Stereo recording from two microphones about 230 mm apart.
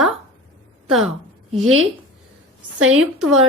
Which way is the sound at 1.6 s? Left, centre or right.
Right.